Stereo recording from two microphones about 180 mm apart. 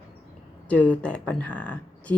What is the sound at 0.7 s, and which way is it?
Speech, 10° left (ahead or behind).